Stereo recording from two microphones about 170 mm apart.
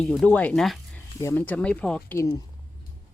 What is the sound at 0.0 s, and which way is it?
Speech, centre (ahead or behind).